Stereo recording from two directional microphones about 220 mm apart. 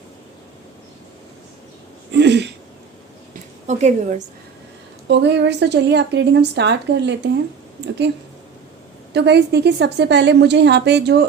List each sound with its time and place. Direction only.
2.1 s throat clearing: 50° right (ahead or behind)
3.7 s a woman's voice: 30° right (ahead or behind)
5.0 s speech: 50° right (ahead or behind)
9.1 s speech: 50° right (ahead or behind)